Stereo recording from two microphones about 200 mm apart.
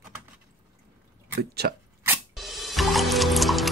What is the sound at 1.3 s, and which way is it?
Speech, 55° right (ahead or behind).